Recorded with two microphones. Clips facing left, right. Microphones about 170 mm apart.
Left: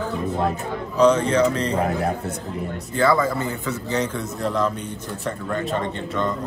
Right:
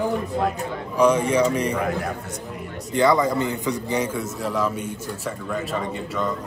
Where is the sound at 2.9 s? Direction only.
20° right (ahead or behind).